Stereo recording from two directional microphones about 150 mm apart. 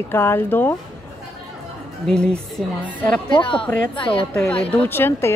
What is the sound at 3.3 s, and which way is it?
Speech, 35° left (ahead or behind).